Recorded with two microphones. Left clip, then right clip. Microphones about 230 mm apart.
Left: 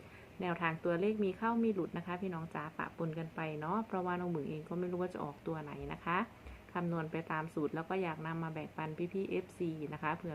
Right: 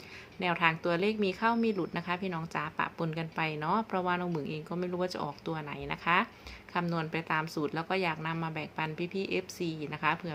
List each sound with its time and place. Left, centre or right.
0.3 s a woman's voice: centre